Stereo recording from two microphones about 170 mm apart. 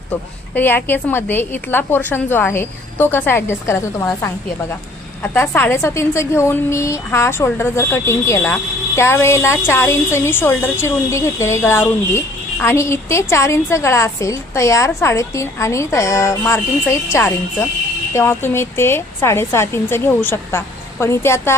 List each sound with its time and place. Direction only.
0.1 s a woman's voice: 10° left (ahead or behind)